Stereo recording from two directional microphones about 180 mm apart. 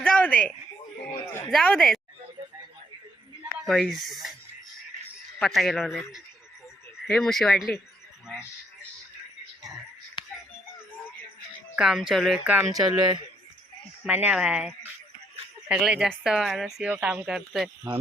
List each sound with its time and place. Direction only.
0.0 s a sound: 5° left (ahead or behind)
1.5 s speech: 5° left (ahead or behind)
3.6 s speech: centre (ahead or behind)
5.4 s speech: centre (ahead or behind)
7.1 s speech: centre (ahead or behind)
11.8 s speech: centre (ahead or behind)
12.5 s speech: 20° right (ahead or behind)
14.0 s speech: 10° right (ahead or behind)
15.7 s speech: 5° right (ahead or behind)